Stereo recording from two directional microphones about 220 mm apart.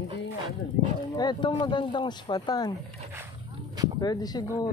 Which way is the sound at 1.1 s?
20° left (ahead or behind).